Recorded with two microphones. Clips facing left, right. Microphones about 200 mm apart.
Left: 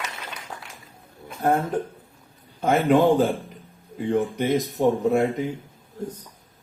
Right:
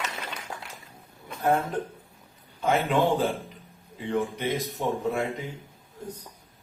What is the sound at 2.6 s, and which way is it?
Speech, 45° left (ahead or behind).